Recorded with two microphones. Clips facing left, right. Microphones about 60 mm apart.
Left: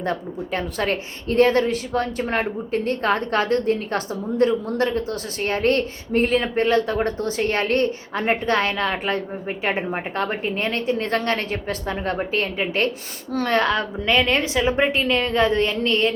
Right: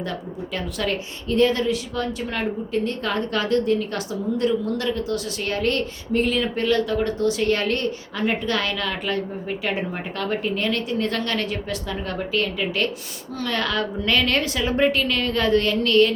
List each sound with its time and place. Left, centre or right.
0.0 s a woman's voice: left